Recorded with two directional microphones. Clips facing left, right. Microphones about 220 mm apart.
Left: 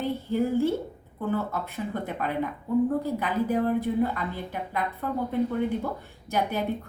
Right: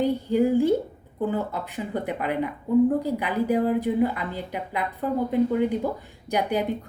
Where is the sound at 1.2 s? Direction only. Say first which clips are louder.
Right 2 dB; 15° right (ahead or behind).